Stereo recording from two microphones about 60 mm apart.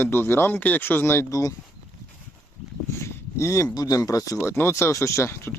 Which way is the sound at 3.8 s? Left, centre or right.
Left.